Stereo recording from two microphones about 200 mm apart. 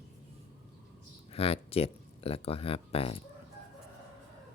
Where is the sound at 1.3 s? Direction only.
30° left (ahead or behind).